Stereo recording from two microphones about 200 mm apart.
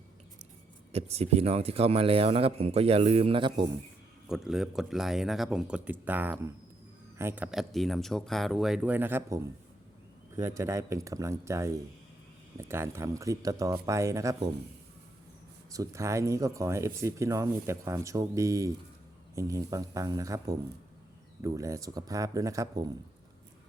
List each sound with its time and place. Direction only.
0.9 s speech: 30° right (ahead or behind)
4.3 s speech: centre (ahead or behind)
15.7 s speech: 15° right (ahead or behind)